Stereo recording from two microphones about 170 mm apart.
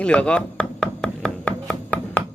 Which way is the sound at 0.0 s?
5° left (ahead or behind).